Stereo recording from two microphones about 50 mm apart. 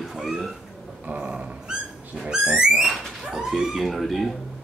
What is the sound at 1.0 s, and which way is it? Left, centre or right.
Dog, right.